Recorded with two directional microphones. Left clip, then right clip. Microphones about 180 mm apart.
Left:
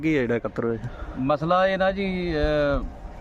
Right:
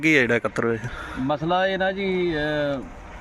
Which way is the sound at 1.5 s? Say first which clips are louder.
Left 1 dB; 20° left (ahead or behind).